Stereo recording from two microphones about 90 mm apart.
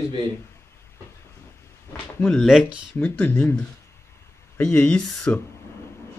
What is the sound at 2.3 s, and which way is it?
Speech, 5° left (ahead or behind).